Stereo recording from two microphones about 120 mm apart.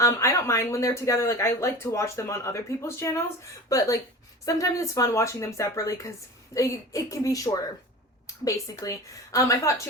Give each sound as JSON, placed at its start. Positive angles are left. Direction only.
{"t": 0.0, "sound": "speech", "side_deg": 25}